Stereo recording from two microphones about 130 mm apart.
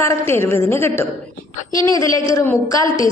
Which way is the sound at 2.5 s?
25° left (ahead or behind).